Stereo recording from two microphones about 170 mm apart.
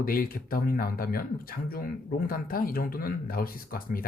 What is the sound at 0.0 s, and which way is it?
Speech, 55° left (ahead or behind).